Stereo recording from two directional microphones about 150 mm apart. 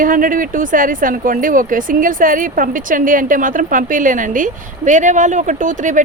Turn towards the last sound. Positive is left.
turn(degrees=-55)  # may be behind; listen again after turning